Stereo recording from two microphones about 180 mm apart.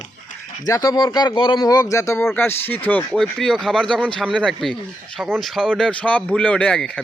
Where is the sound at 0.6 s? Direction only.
20° left (ahead or behind).